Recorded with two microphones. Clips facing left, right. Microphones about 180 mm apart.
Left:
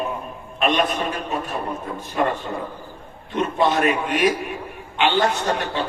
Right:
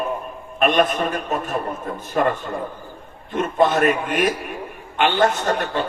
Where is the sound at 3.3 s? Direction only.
45° right (ahead or behind).